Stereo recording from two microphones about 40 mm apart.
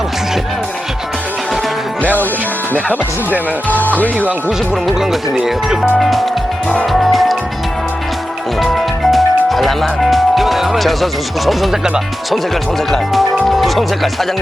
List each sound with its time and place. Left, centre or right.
3.7 s speech: left
4.2 s speech: right
4.7 s speech: centre
6.9 s music: centre
8.6 s music: centre
13.5 s speech: centre